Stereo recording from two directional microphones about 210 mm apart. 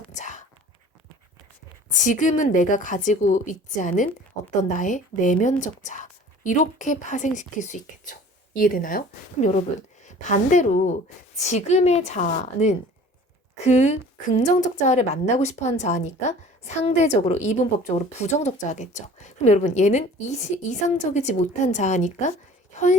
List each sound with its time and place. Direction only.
0.1 s whispering: 35° left (ahead or behind)
1.9 s speech: 35° left (ahead or behind)